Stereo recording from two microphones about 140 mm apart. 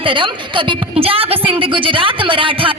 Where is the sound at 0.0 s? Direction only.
35° right (ahead or behind).